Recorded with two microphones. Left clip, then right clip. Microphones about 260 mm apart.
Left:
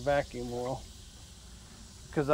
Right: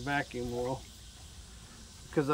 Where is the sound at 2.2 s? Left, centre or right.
Centre.